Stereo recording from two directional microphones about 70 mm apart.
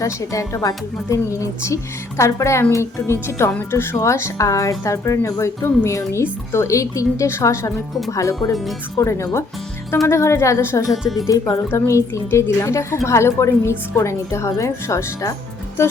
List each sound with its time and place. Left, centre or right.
0.0 s a woman's voice: left
10.9 s speech: centre
11.3 s a woman's voice: left